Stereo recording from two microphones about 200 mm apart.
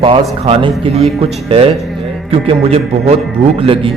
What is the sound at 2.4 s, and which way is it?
A man's voice, 30° right (ahead or behind).